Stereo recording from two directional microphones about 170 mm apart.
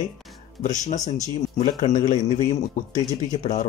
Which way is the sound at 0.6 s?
45° left (ahead or behind).